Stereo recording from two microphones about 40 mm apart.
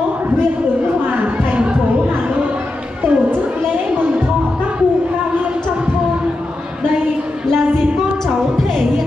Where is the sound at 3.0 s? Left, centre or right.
Right.